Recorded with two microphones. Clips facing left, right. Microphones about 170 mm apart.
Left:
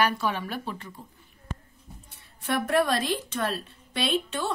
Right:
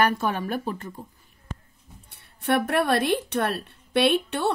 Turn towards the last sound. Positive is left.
turn(degrees=-65)  # may be behind; listen again after turning